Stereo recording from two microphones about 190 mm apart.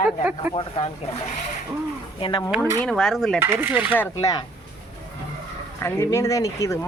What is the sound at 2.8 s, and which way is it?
Speech, 5° left (ahead or behind).